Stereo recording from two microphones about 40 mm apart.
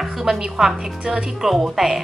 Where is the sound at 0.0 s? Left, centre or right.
Centre.